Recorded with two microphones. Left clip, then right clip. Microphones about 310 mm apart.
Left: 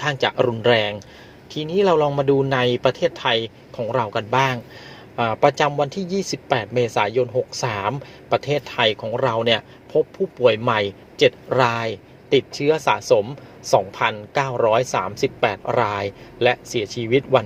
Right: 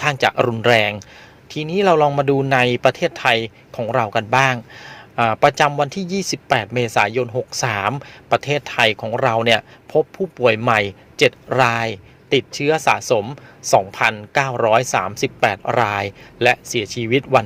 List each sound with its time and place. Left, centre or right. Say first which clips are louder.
0.0 s speech: right 3 dB; right